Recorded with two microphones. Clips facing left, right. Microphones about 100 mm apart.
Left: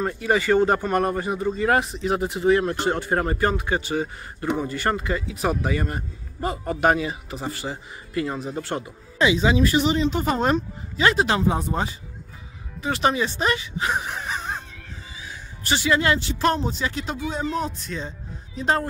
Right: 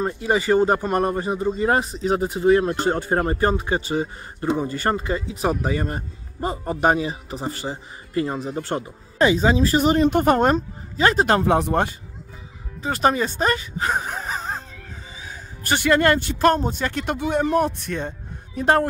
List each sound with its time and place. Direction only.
0.0 s a man's voice: 20° right (ahead or behind)
9.2 s speech: 45° right (ahead or behind)
11.5 s speech: 65° right (ahead or behind)
12.8 s speech: 45° right (ahead or behind)
15.2 s speech: 50° right (ahead or behind)